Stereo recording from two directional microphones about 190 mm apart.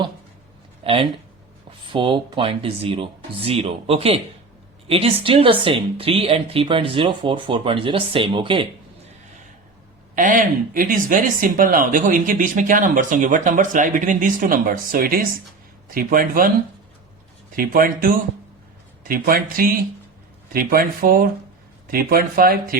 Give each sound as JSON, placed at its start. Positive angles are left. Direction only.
{"t": 0.8, "sound": "a sound", "side_deg": -30}
{"t": 1.9, "sound": "speech", "side_deg": -25}
{"t": 10.2, "sound": "speech", "side_deg": -45}
{"t": 17.5, "sound": "speech", "side_deg": -50}